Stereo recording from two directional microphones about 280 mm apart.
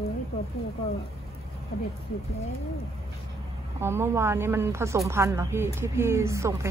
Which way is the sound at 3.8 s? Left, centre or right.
Centre.